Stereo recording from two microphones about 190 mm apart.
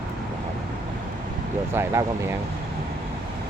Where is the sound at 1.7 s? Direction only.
15° right (ahead or behind).